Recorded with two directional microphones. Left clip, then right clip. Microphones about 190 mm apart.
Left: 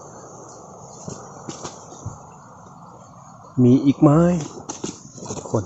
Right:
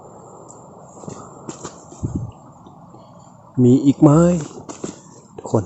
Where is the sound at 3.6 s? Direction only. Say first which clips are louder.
Right 2 dB; 15° right (ahead or behind).